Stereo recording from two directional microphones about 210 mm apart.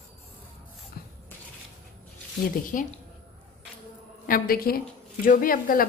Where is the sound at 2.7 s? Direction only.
40° left (ahead or behind).